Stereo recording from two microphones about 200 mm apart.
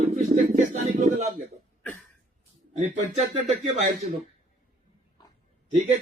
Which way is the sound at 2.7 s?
35° right (ahead or behind).